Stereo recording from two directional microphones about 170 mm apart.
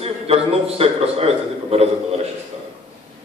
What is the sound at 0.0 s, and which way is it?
A man's voice, 35° right (ahead or behind).